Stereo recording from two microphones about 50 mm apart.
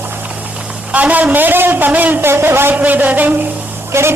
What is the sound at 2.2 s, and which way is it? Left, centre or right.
Speech, right.